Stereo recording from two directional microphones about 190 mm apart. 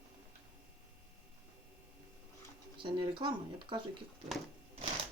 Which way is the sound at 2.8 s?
25° right (ahead or behind).